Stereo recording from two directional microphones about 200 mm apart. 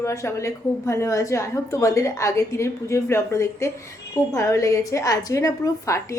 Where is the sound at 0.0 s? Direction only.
15° left (ahead or behind).